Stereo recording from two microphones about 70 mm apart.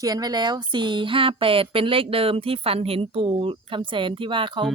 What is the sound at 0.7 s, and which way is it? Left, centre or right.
Speech, right.